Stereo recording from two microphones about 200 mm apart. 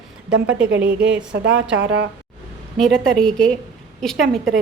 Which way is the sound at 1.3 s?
60° right (ahead or behind).